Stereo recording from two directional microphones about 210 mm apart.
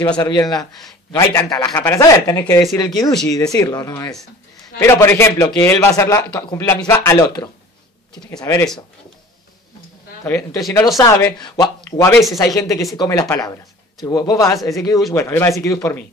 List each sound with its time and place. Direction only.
0.0 s a man's voice: 10° left (ahead or behind)
0.3 s a man's voice: 20° left (ahead or behind)
10.2 s a man's voice: 5° left (ahead or behind)